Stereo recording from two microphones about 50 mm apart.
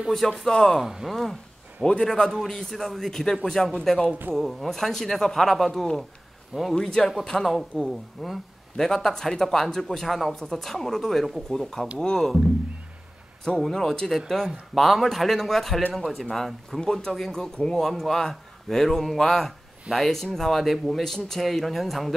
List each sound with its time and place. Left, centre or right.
0.5 s speech: centre
0.8 s speech: centre
1.1 s a sound: centre
1.9 s speech: centre
13.4 s speech: centre